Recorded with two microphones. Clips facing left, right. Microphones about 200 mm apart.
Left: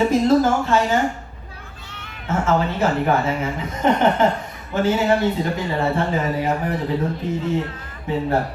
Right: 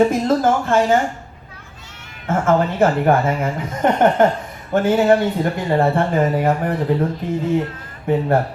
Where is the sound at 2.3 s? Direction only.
50° right (ahead or behind).